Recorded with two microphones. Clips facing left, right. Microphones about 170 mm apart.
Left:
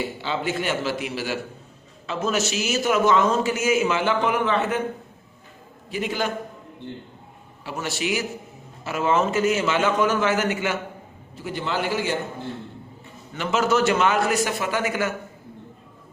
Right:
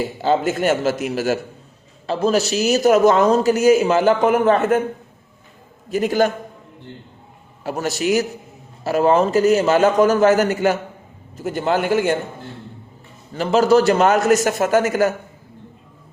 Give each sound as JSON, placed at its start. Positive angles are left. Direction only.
{"t": 0.0, "sound": "a man's voice", "side_deg": -45}
{"t": 2.0, "sound": "speech", "side_deg": -35}
{"t": 5.9, "sound": "a man's voice", "side_deg": -40}
{"t": 7.6, "sound": "a man's voice", "side_deg": -45}
{"t": 13.3, "sound": "speech", "side_deg": -35}